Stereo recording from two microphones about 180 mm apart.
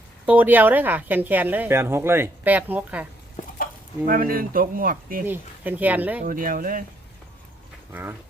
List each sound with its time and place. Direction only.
0.3 s speech: 10° right (ahead or behind)
4.0 s speech: 50° right (ahead or behind)
5.2 s speech: 10° right (ahead or behind)
6.2 s speech: 50° right (ahead or behind)